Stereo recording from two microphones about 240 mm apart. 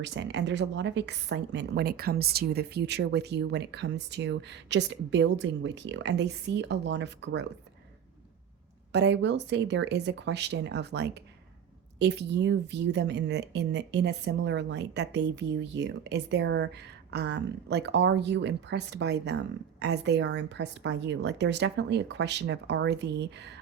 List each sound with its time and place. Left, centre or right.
0.0 s a woman's voice: right
8.9 s a woman's voice: right